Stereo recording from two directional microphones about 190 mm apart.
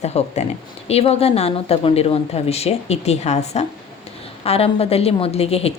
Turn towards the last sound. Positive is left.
turn(degrees=30)  # may be behind; listen again after turning